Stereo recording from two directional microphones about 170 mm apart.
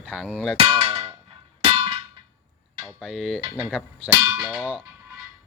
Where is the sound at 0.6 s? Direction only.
35° right (ahead or behind).